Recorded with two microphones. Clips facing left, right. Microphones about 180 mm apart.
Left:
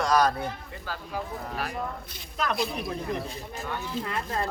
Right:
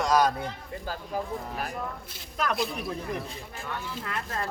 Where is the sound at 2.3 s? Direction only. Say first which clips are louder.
Even; 5° right (ahead or behind).